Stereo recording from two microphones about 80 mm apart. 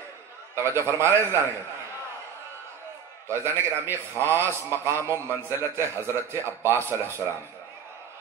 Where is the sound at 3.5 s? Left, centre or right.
Right.